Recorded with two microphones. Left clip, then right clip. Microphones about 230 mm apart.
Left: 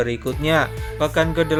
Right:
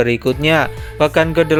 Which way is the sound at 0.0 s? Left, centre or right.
Right.